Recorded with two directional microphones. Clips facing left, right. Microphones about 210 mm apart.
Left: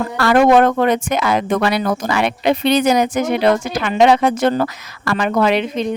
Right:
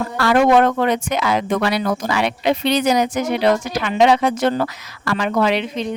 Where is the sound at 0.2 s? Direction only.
50° left (ahead or behind).